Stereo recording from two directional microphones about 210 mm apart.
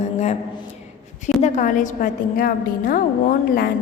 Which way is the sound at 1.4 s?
35° left (ahead or behind).